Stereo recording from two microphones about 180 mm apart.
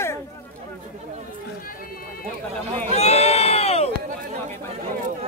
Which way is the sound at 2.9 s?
35° left (ahead or behind).